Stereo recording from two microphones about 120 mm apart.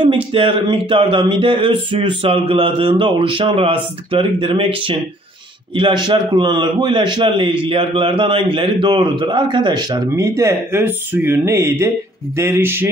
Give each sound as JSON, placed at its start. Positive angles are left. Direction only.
{"t": 0.0, "sound": "speech", "side_deg": -50}
{"t": 5.8, "sound": "a man's voice", "side_deg": -40}